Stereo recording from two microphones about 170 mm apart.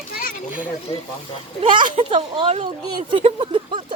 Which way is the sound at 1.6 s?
30° right (ahead or behind).